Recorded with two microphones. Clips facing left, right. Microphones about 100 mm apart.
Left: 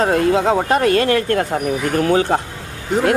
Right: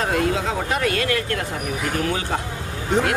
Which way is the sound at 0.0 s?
40° left (ahead or behind).